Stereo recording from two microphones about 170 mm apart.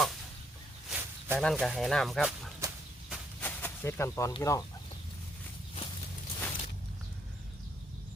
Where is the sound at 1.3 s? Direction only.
5° left (ahead or behind).